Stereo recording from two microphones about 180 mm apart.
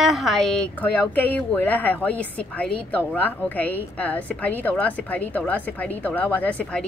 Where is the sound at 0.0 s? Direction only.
Centre (ahead or behind).